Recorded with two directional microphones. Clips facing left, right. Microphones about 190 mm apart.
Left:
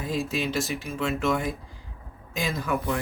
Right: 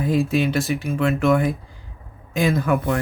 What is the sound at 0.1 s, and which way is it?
Speech, 60° right (ahead or behind).